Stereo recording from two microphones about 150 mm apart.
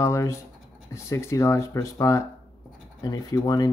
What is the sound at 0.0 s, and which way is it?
Speech, 20° left (ahead or behind).